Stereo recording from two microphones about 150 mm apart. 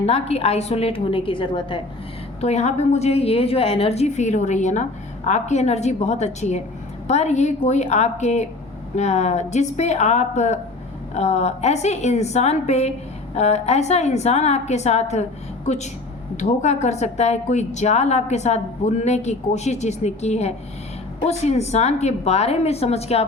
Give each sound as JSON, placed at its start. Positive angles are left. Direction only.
{"t": 0.0, "sound": "a woman's voice", "side_deg": 45}
{"t": 2.4, "sound": "a woman's voice", "side_deg": 50}